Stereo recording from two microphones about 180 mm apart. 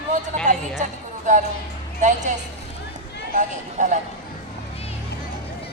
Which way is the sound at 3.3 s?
45° right (ahead or behind).